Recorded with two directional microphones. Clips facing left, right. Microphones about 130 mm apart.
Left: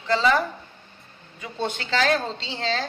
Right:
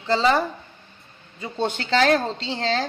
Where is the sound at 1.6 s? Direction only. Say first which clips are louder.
Right 4 dB; 35° right (ahead or behind).